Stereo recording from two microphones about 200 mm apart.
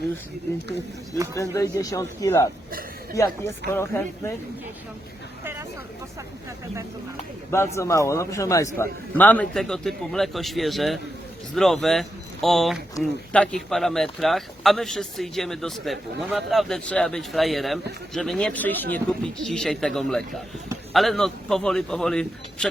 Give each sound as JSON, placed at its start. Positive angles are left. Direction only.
{"t": 1.4, "sound": "a man's voice", "side_deg": 15}
{"t": 3.7, "sound": "a man's voice", "side_deg": 10}
{"t": 7.5, "sound": "a man's voice", "side_deg": 15}